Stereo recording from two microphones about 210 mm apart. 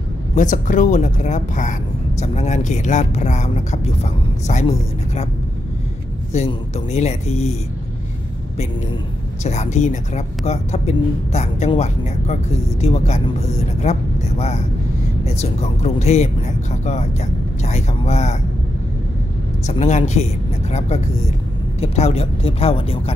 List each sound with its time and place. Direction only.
0.4 s speech: 35° left (ahead or behind)
6.3 s speech: 30° left (ahead or behind)
9.4 s speech: 35° left (ahead or behind)
15.3 s speech: 30° left (ahead or behind)
19.6 s speech: 30° left (ahead or behind)
21.7 s speech: 30° left (ahead or behind)